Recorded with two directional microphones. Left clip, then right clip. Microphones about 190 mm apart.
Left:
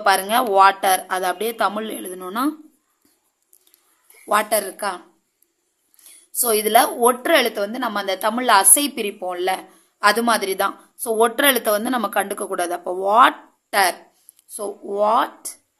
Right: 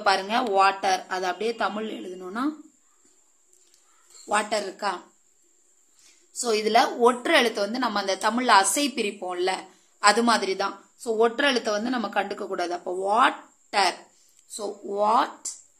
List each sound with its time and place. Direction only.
0.0 s speech: 30° left (ahead or behind)
4.3 s a woman's voice: 30° left (ahead or behind)
5.9 s a woman's voice: 35° left (ahead or behind)